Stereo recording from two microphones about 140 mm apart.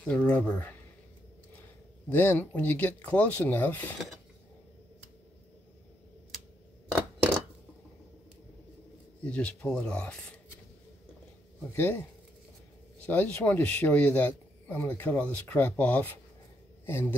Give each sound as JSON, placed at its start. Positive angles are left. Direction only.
{"t": 0.0, "sound": "a man's voice", "side_deg": 10}
{"t": 2.0, "sound": "a man's voice", "side_deg": 15}
{"t": 9.2, "sound": "a man's voice", "side_deg": 10}
{"t": 11.7, "sound": "a man's voice", "side_deg": 15}